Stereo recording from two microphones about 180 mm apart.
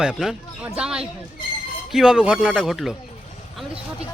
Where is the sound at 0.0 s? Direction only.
5° right (ahead or behind).